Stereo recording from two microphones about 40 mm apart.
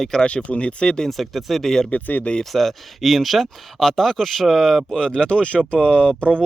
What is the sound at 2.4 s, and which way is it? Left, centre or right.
Speech, centre.